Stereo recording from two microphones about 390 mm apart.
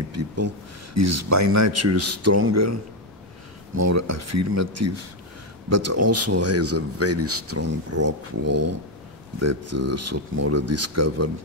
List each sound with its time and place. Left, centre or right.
0.1 s speech: right